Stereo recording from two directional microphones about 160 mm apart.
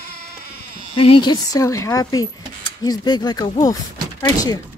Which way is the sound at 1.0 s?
30° left (ahead or behind).